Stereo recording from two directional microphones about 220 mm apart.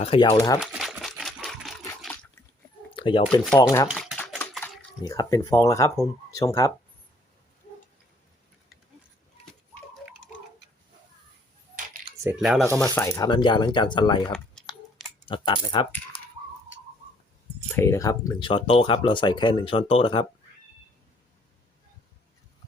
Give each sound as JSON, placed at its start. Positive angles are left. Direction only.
{"t": 0.0, "sound": "speech", "side_deg": 25}
{"t": 0.6, "sound": "a sound", "side_deg": 0}
{"t": 2.9, "sound": "a sound", "side_deg": 25}
{"t": 3.6, "sound": "speech", "side_deg": 15}
{"t": 3.8, "sound": "typewriter", "side_deg": 0}
{"t": 5.0, "sound": "speech", "side_deg": 15}
{"t": 12.2, "sound": "speech", "side_deg": -5}
{"t": 12.9, "sound": "speech", "side_deg": 15}
{"t": 17.7, "sound": "speech", "side_deg": 10}